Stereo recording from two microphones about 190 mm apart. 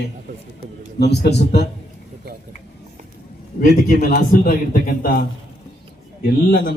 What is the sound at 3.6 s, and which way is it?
A man's voice, 45° left (ahead or behind).